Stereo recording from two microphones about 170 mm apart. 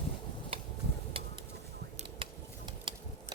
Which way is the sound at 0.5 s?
35° right (ahead or behind).